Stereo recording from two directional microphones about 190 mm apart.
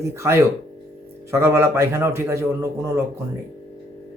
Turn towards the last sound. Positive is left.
turn(degrees=-15)  # may be behind; listen again after turning